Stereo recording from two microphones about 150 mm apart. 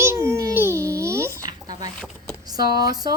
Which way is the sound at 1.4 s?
25° right (ahead or behind).